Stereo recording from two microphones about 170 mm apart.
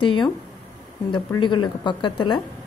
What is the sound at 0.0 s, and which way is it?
Speech, 30° left (ahead or behind).